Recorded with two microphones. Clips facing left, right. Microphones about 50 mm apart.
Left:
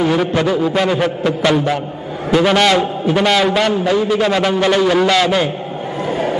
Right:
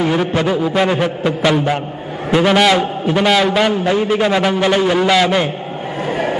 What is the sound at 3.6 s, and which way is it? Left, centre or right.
A man's voice, right.